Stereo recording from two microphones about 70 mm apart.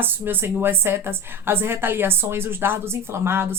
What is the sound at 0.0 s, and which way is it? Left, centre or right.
A woman's voice, right.